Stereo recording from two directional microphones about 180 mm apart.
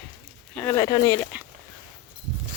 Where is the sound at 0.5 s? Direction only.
10° left (ahead or behind).